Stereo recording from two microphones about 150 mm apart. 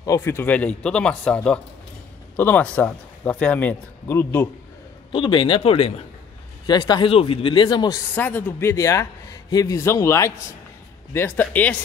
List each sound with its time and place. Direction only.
0.0 s speech: 20° left (ahead or behind)
5.1 s a man's voice: 35° left (ahead or behind)
6.6 s a man's voice: 30° left (ahead or behind)
8.1 s a man's voice: 10° left (ahead or behind)